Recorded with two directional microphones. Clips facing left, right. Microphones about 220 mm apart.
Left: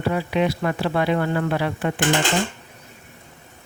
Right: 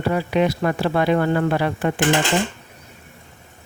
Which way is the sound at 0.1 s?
45° right (ahead or behind).